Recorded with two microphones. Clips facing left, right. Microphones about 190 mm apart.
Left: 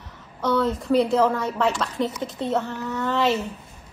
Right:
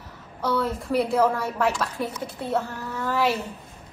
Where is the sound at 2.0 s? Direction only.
20° left (ahead or behind).